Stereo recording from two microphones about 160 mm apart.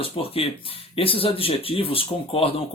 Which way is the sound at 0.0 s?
35° left (ahead or behind).